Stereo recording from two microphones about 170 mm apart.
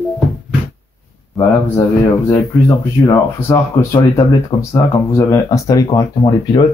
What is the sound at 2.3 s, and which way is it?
Speech, 15° left (ahead or behind).